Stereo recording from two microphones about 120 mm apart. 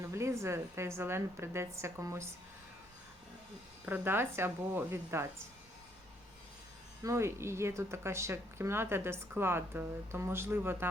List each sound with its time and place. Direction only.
0.0 s speech: 25° right (ahead or behind)
3.8 s speech: 15° right (ahead or behind)
7.0 s speech: 25° right (ahead or behind)